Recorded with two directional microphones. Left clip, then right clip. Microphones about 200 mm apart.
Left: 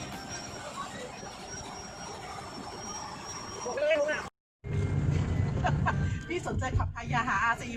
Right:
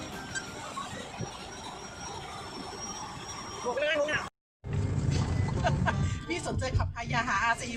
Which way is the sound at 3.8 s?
50° right (ahead or behind).